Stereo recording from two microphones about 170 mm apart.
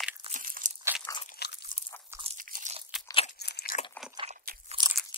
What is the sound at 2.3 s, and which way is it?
Crunch, 55° right (ahead or behind).